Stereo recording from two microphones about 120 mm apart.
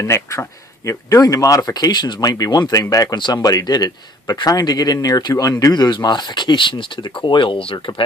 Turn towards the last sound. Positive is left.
turn(degrees=45)  # may be behind; listen again after turning